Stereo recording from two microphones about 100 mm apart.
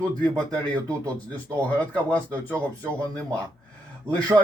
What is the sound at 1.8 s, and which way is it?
Speech, 15° left (ahead or behind).